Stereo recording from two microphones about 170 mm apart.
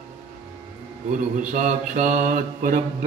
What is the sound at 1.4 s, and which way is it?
Mantra, 50° right (ahead or behind).